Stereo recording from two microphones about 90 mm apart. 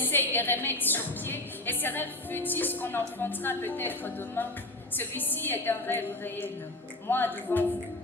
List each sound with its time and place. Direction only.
0.0 s a woman's voice: 20° left (ahead or behind)